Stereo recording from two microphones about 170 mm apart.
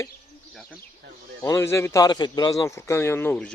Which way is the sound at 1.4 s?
15° left (ahead or behind).